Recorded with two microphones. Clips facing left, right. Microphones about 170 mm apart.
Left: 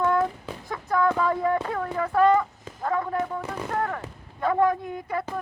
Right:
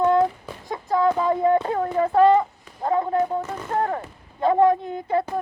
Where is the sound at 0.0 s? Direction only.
25° right (ahead or behind).